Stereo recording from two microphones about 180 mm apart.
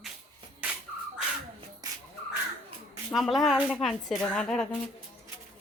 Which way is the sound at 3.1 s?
Centre (ahead or behind).